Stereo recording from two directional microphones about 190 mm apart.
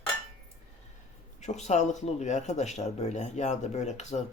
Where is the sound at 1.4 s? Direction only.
35° left (ahead or behind).